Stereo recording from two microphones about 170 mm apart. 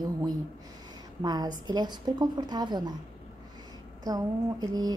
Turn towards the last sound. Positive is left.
turn(degrees=-20)  # may be behind; listen again after turning